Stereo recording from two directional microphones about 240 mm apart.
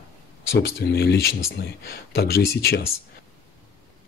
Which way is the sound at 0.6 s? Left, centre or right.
Left.